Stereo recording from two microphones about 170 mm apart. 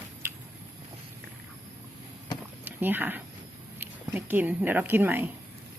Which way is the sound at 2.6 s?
10° right (ahead or behind).